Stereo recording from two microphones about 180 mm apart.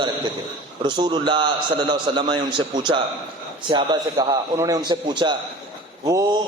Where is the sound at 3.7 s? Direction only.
25° right (ahead or behind).